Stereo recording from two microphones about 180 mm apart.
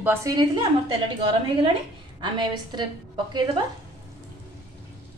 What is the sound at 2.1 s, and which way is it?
Speech, 25° right (ahead or behind).